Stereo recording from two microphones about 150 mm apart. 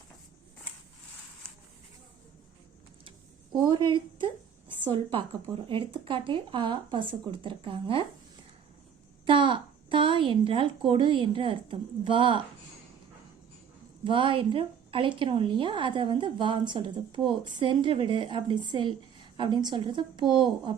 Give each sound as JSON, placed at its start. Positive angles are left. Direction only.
{"t": 4.8, "sound": "a woman's voice", "side_deg": -35}
{"t": 9.2, "sound": "a woman's voice", "side_deg": -35}
{"t": 14.0, "sound": "a woman's voice", "side_deg": -35}